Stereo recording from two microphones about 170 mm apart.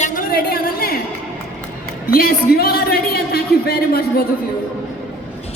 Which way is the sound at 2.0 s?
60° left (ahead or behind).